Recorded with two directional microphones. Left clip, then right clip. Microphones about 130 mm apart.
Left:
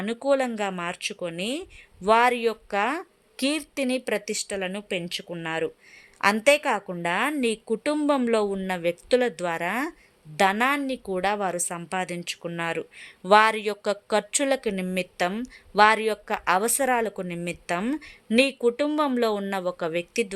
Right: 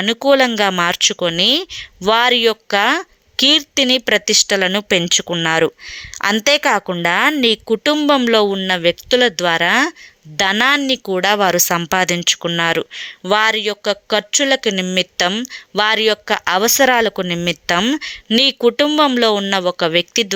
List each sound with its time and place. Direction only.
0.0 s speech: 30° right (ahead or behind)
2.0 s speech: 25° right (ahead or behind)
13.0 s speech: 15° right (ahead or behind)